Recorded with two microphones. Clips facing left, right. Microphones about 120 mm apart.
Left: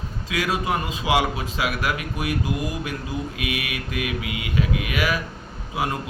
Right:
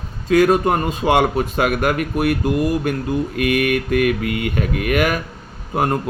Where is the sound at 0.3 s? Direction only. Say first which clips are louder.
Right 10 dB; 50° right (ahead or behind).